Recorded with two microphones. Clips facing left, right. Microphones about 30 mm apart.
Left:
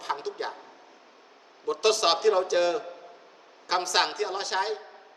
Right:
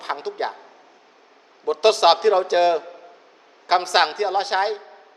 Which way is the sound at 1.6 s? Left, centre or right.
Right.